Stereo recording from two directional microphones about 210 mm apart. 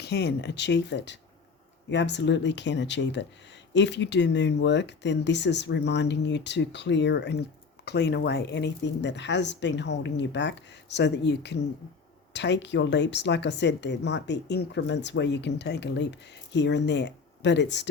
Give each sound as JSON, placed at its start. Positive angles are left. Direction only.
{"t": 0.0, "sound": "speech", "side_deg": 50}